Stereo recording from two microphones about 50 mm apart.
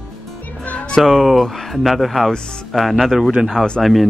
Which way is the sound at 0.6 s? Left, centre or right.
Left.